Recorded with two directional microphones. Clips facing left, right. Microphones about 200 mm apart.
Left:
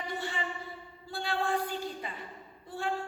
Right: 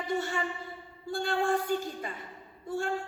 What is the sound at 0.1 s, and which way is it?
Speech, 45° right (ahead or behind).